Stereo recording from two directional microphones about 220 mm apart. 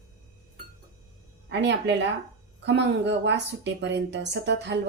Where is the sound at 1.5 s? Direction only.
50° right (ahead or behind).